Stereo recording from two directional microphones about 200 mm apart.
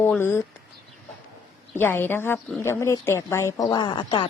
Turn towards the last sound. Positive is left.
turn(degrees=25)  # may be behind; listen again after turning